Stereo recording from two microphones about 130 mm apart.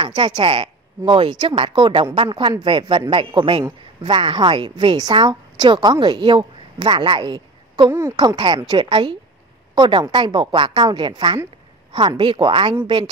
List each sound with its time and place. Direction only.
0.0 s a woman's voice: 40° right (ahead or behind)